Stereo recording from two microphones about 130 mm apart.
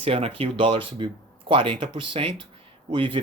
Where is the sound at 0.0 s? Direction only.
50° right (ahead or behind).